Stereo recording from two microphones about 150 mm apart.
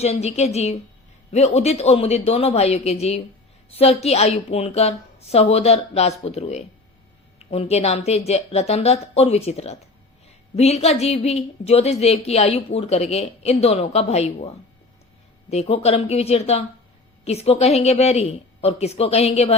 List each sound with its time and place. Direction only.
0.0 s a woman's voice: 45° left (ahead or behind)